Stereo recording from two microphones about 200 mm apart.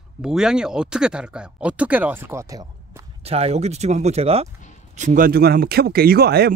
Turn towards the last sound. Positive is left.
turn(degrees=-50)  # may be behind; listen again after turning